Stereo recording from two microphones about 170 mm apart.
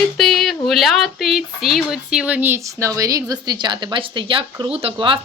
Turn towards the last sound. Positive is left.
turn(degrees=-30)  # may be behind; listen again after turning